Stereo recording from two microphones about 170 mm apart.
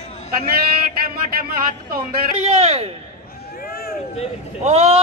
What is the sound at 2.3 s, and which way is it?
Speech, 35° right (ahead or behind).